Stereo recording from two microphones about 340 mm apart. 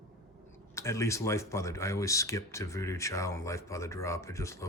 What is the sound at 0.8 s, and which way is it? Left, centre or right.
Speech, centre.